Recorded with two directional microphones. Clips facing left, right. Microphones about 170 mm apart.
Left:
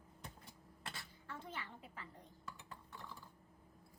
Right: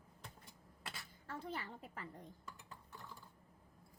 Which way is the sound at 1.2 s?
35° right (ahead or behind).